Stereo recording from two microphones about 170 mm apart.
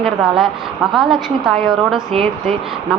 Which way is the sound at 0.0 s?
5° right (ahead or behind).